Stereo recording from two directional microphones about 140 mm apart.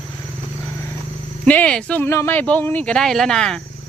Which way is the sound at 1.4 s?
10° left (ahead or behind).